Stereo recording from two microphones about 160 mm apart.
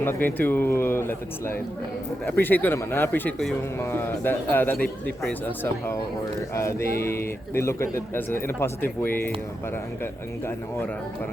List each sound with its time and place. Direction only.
0.0 s a man's voice: 15° left (ahead or behind)